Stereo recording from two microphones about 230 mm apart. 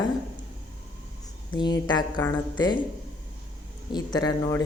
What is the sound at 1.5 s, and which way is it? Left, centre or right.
Speech, centre.